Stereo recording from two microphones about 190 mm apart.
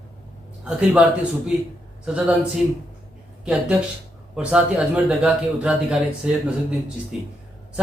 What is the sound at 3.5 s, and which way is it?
Speech, 5° right (ahead or behind).